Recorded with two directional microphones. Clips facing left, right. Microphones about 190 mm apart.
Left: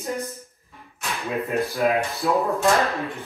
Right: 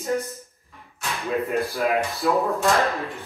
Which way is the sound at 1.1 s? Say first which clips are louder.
Right 1 dB; centre (ahead or behind).